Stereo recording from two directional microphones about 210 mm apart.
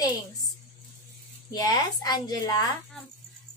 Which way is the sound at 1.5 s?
15° left (ahead or behind).